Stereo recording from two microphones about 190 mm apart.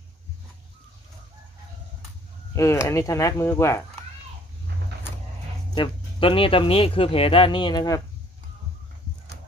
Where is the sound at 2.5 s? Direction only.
15° left (ahead or behind).